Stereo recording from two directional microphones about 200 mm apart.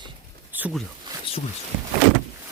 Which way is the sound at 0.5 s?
10° right (ahead or behind).